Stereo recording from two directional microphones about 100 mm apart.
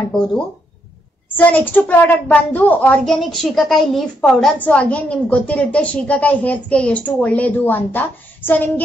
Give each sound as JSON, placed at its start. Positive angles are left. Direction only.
{"t": 1.3, "sound": "a woman's voice", "side_deg": 15}
{"t": 3.1, "sound": "a woman's voice", "side_deg": 5}
{"t": 4.6, "sound": "a woman's voice", "side_deg": 15}